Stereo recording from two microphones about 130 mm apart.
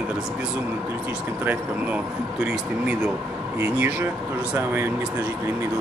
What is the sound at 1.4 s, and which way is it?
Speech, 10° right (ahead or behind).